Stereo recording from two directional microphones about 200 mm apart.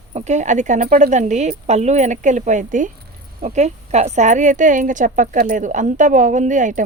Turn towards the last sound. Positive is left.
turn(degrees=-40)  # may be behind; listen again after turning